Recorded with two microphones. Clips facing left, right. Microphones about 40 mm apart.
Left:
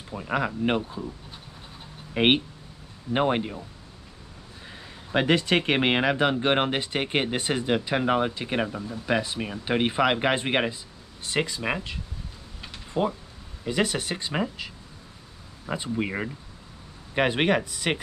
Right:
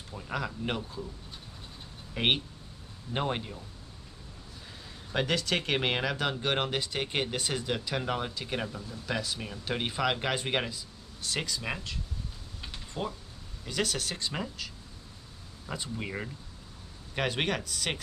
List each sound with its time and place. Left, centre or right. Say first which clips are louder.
0.1 s speech: left 8 dB; left
2.1 s speech: left 7 dB; left
4.6 s speech: left 6 dB; left
12.6 s mechanisms: left 9 dB; left
13.7 s speech: left 6 dB; left